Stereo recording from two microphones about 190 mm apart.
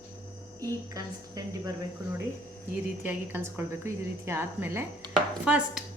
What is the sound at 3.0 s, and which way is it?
A woman's voice, 10° right (ahead or behind).